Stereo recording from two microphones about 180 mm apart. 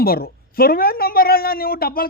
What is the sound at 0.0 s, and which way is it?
Speech, 55° left (ahead or behind).